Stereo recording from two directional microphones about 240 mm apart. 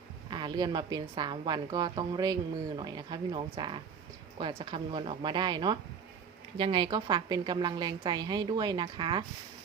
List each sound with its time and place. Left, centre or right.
0.3 s a woman's voice: centre